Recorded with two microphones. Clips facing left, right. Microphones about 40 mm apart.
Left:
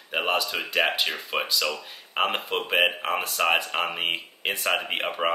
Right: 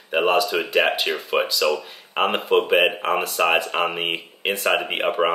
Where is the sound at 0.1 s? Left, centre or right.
Centre.